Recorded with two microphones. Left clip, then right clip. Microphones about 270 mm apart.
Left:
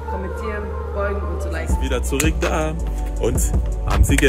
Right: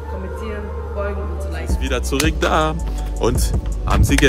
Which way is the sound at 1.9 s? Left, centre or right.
Centre.